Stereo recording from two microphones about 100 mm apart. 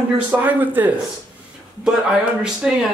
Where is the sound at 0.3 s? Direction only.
20° right (ahead or behind).